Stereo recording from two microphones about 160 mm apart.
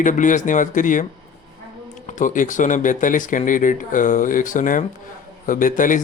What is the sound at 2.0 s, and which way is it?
A man's voice, 50° left (ahead or behind).